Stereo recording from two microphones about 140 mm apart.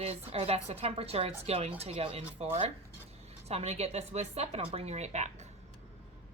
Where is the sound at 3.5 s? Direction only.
50° right (ahead or behind).